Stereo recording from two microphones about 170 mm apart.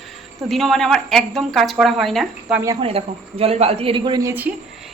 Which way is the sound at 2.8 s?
35° right (ahead or behind).